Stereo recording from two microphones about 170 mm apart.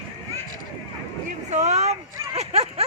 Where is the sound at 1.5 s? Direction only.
45° right (ahead or behind).